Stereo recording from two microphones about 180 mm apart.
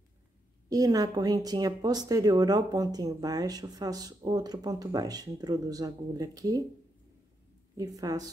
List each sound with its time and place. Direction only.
0.7 s speech: 20° right (ahead or behind)
7.7 s speech: 20° right (ahead or behind)